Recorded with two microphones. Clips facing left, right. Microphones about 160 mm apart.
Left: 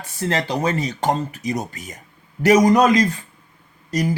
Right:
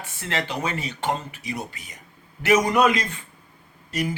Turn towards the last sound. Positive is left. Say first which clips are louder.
# left 5 dB
turn(degrees=40)  # may be behind; listen again after turning